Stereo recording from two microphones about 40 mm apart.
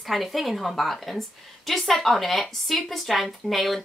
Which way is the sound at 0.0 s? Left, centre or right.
Centre.